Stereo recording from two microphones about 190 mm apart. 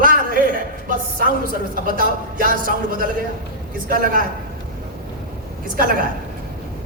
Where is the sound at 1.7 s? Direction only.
45° right (ahead or behind).